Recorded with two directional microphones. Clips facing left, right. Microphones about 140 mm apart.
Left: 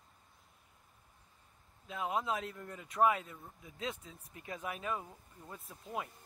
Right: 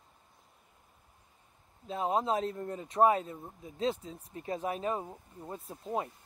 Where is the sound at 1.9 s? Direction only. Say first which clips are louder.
Right 6 dB; 30° right (ahead or behind).